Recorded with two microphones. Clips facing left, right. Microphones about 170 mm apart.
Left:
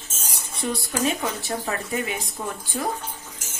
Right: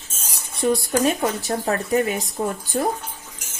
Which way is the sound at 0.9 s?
45° right (ahead or behind).